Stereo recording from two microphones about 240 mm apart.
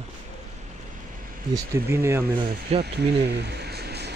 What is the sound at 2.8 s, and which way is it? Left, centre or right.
Speech, right.